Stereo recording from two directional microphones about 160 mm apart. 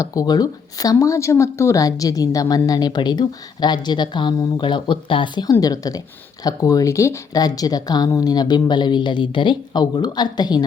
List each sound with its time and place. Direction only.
0.0 s speech: 20° left (ahead or behind)